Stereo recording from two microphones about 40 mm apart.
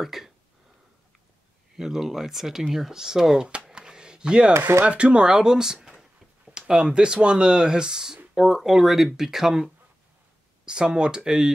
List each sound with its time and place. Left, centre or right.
0.0 s speech: centre
1.8 s speech: centre
3.4 s a sound: right
4.8 s speech: right
5.3 s speech: centre
10.6 s speech: right